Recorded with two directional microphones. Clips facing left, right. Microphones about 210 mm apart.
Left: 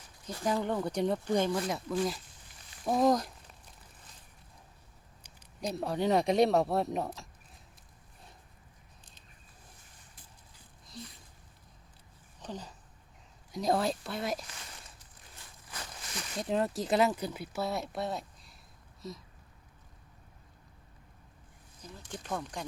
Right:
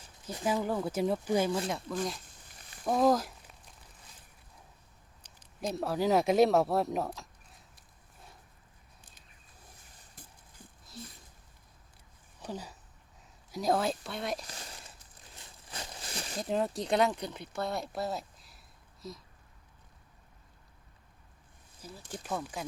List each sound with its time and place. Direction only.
0.4 s speech: 5° right (ahead or behind)
5.5 s speech: centre (ahead or behind)
12.4 s speech: 10° right (ahead or behind)
14.4 s speech: 35° right (ahead or behind)
15.7 s a sound: 30° right (ahead or behind)
16.4 s speech: centre (ahead or behind)
21.8 s speech: 5° right (ahead or behind)